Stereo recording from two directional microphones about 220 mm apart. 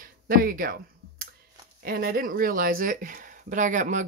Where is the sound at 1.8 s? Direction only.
40° right (ahead or behind).